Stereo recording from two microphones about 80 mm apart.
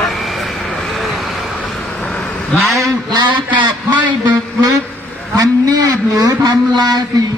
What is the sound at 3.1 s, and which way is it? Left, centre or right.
A man's voice, right.